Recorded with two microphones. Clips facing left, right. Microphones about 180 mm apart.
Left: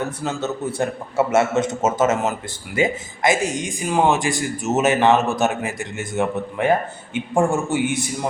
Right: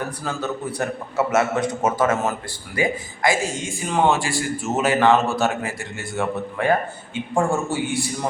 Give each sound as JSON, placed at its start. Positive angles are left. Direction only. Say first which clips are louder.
{"t": 0.0, "sound": "speech", "louder": "left 2 dB", "side_deg": 25}